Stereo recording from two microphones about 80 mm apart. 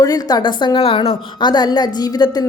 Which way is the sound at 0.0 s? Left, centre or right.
Left.